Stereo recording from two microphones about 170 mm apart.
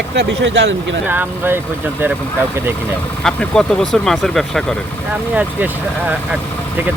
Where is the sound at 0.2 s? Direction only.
90° right.